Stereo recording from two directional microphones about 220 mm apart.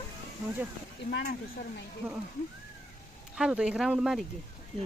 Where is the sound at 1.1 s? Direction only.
50° left (ahead or behind).